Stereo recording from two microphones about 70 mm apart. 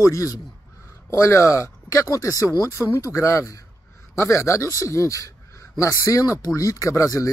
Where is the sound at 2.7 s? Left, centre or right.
Left.